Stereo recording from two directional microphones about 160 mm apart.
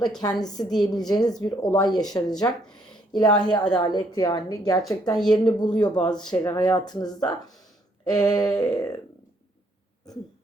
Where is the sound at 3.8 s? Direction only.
25° left (ahead or behind).